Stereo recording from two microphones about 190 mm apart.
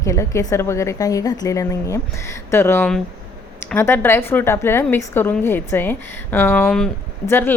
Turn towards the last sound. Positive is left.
turn(degrees=10)  # may be behind; listen again after turning